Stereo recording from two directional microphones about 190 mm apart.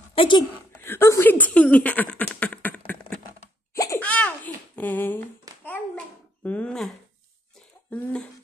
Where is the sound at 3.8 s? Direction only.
10° left (ahead or behind).